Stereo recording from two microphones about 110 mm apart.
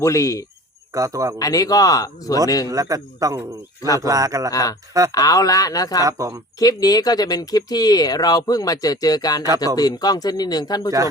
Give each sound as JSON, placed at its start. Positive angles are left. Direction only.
{"t": 0.0, "sound": "speech", "side_deg": 30}
{"t": 0.9, "sound": "speech", "side_deg": -30}
{"t": 1.4, "sound": "speech", "side_deg": 35}
{"t": 2.6, "sound": "a man's voice", "side_deg": -30}
{"t": 4.5, "sound": "speech", "side_deg": 35}
{"t": 6.1, "sound": "speech", "side_deg": -30}
{"t": 6.6, "sound": "speech", "side_deg": 35}